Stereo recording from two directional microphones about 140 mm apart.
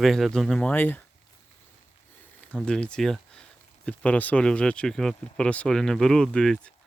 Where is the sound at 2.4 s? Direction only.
10° left (ahead or behind).